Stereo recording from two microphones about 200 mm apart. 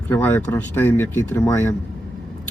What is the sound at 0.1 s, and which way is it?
Speech, 10° left (ahead or behind).